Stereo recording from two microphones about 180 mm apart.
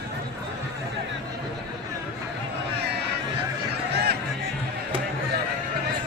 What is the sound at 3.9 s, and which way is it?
Music, 65° right (ahead or behind).